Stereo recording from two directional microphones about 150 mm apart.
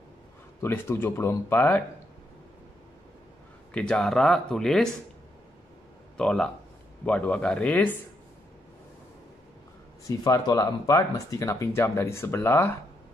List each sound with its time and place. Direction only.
0.6 s speech: 15° left (ahead or behind)
3.7 s speech: 5° left (ahead or behind)
6.1 s speech: 5° left (ahead or behind)
10.0 s speech: 25° left (ahead or behind)